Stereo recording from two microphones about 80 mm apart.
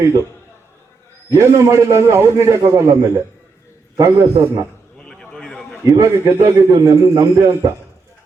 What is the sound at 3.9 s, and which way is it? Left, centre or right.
Speech, right.